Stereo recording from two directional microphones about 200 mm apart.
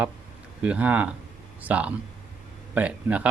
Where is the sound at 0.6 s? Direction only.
5° right (ahead or behind).